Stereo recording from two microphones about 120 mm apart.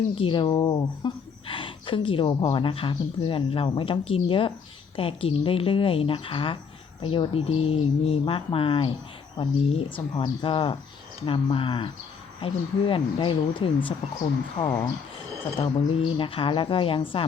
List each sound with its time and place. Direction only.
0.2 s speech: 45° left (ahead or behind)